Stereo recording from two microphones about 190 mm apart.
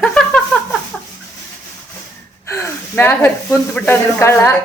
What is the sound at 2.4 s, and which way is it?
Speech, 15° left (ahead or behind).